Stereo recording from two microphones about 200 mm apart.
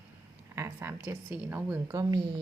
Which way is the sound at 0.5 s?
15° right (ahead or behind).